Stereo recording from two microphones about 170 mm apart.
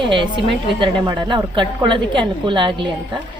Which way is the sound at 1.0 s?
25° right (ahead or behind).